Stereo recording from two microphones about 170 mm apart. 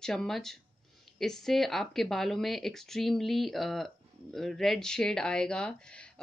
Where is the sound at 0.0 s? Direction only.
5° left (ahead or behind).